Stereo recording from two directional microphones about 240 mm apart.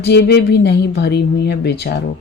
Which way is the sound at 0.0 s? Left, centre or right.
Left.